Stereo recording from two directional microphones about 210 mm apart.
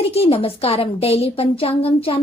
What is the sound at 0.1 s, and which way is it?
A woman's voice, 25° left (ahead or behind).